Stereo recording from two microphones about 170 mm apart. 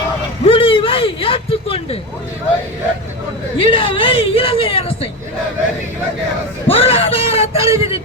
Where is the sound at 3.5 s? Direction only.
30° left (ahead or behind).